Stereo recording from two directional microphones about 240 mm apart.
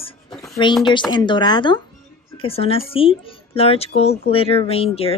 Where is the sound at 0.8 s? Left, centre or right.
Centre.